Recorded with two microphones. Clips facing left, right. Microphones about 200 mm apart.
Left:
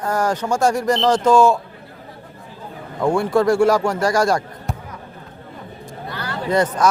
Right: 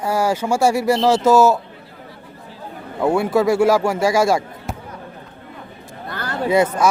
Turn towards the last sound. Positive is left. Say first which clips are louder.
# right 2 dB
turn(degrees=-5)  # may be behind; listen again after turning